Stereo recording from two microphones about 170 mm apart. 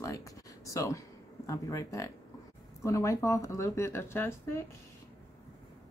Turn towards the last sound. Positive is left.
turn(degrees=15)  # may be behind; listen again after turning